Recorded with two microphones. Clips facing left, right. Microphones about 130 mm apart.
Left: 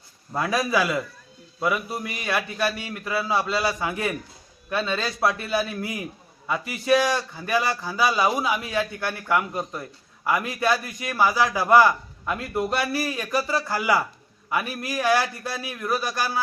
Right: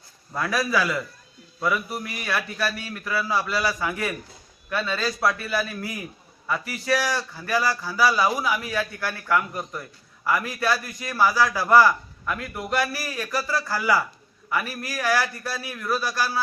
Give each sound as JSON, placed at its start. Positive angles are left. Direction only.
{"t": 0.3, "sound": "a man's voice", "side_deg": 20}